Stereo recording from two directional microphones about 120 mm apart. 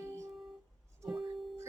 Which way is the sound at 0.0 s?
25° right (ahead or behind).